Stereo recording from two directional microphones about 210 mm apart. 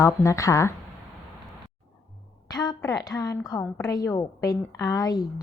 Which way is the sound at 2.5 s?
15° left (ahead or behind).